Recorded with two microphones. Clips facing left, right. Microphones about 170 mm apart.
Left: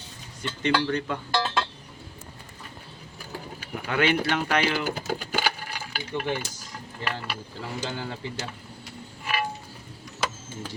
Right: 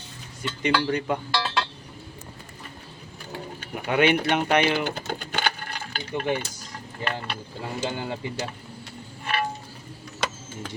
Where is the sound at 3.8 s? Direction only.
20° right (ahead or behind).